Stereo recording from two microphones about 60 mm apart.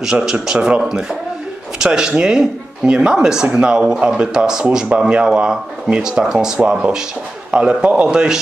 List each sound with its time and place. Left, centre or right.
0.0 s speech: centre